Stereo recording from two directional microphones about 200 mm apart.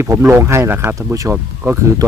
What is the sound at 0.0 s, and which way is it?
Speech, 10° right (ahead or behind).